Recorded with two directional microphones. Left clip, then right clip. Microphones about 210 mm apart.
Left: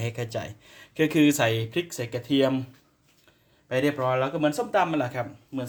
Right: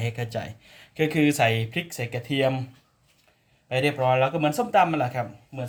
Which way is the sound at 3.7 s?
20° left (ahead or behind).